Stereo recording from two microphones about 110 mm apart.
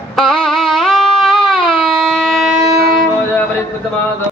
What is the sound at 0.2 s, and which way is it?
Music, 5° left (ahead or behind).